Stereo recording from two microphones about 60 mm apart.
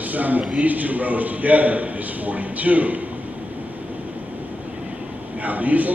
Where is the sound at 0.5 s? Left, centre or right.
Right.